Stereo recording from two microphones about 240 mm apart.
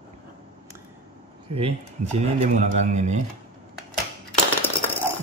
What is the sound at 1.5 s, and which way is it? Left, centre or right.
Speech, right.